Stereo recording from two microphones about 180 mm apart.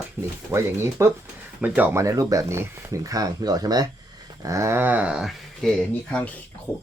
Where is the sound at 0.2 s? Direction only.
10° right (ahead or behind).